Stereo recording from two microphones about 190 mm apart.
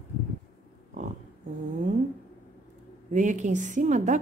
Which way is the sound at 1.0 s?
40° right (ahead or behind).